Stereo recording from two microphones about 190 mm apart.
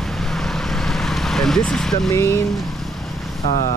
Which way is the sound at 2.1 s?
15° left (ahead or behind).